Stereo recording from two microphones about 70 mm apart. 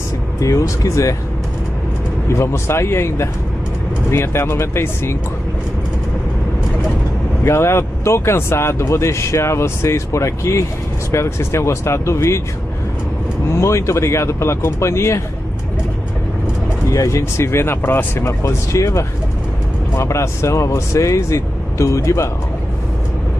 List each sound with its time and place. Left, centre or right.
0.4 s speech: left
2.3 s speech: left
7.4 s speech: left
13.5 s speech: left
16.9 s speech: left
18.4 s speech: left